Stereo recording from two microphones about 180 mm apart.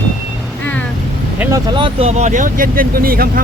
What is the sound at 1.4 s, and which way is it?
Vehicle, 15° right (ahead or behind).